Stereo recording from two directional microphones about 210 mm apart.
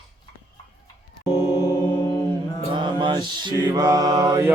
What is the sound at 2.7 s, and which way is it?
Mantra, 20° right (ahead or behind).